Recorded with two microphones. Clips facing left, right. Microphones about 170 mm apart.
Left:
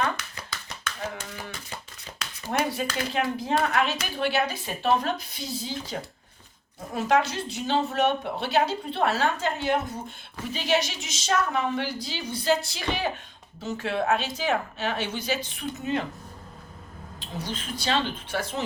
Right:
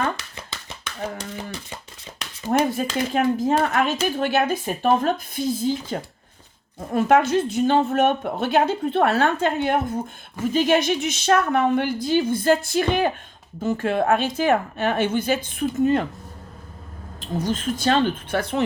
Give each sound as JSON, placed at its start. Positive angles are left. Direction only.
{"t": 2.5, "sound": "a woman's voice", "side_deg": -45}
{"t": 17.2, "sound": "a woman's voice", "side_deg": -45}